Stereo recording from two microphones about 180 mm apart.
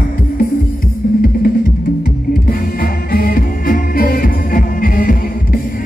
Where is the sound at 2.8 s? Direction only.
55° left (ahead or behind).